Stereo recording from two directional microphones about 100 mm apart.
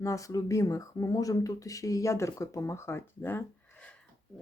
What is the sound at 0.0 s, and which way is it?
Speech, 30° left (ahead or behind).